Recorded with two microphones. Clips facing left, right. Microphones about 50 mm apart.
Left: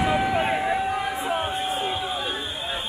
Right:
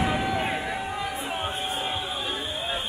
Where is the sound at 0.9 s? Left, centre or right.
Left.